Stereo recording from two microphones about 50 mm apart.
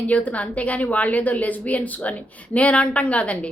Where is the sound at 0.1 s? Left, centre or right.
Left.